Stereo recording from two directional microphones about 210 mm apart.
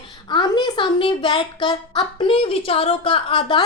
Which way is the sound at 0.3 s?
20° left (ahead or behind).